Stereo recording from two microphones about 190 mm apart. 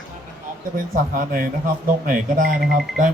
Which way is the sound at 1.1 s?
45° right (ahead or behind).